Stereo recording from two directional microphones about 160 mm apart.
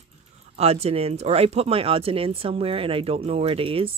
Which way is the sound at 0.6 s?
40° right (ahead or behind).